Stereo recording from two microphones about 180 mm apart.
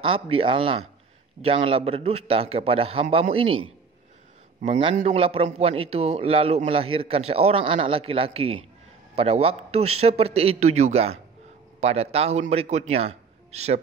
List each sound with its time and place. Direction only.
0.0 s a man's voice: 30° right (ahead or behind)